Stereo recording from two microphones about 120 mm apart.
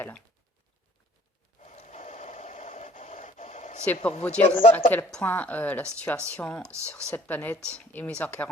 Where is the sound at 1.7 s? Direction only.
90° left.